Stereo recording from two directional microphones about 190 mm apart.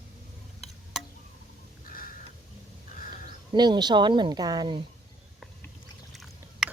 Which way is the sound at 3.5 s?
20° right (ahead or behind).